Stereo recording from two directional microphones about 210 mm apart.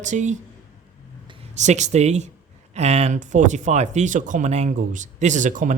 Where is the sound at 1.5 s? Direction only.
35° right (ahead or behind).